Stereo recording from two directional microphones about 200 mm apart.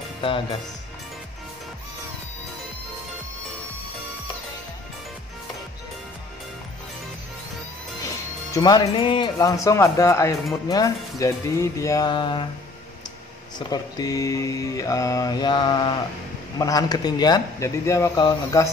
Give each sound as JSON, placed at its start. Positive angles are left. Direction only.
{"t": 8.5, "sound": "speech", "side_deg": 20}
{"t": 13.6, "sound": "speech", "side_deg": 20}